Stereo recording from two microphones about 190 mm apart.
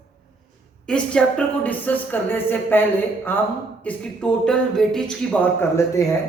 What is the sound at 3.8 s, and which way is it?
Speech, 5° left (ahead or behind).